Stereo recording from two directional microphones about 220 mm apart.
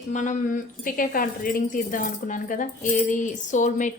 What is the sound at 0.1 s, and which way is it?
Speech, 35° left (ahead or behind).